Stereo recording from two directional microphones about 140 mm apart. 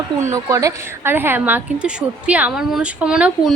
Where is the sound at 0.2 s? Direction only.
20° right (ahead or behind).